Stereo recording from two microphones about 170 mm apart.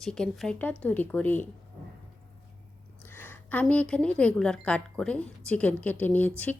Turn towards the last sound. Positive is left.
turn(degrees=10)  # may be behind; listen again after turning